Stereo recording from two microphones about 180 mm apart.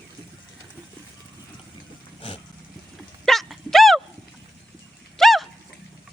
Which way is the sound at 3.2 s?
Centre (ahead or behind).